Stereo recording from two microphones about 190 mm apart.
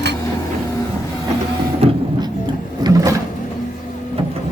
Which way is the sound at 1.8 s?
35° right (ahead or behind).